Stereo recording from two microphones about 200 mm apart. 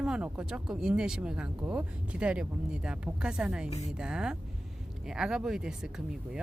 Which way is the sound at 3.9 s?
5° right (ahead or behind).